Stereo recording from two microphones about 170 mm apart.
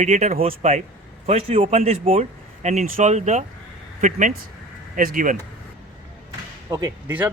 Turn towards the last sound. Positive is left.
turn(degrees=-10)  # may be behind; listen again after turning